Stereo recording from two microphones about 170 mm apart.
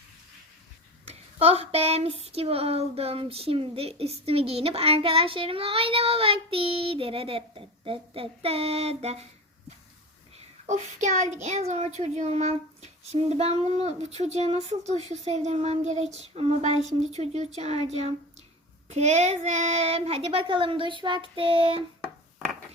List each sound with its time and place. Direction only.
1.4 s child singing: 35° right (ahead or behind)
10.7 s child singing: 45° right (ahead or behind)